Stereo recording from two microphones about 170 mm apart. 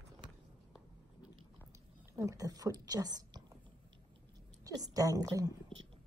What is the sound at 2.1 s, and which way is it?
Speech, 20° right (ahead or behind).